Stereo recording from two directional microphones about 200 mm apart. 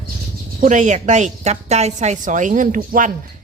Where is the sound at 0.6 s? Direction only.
35° right (ahead or behind).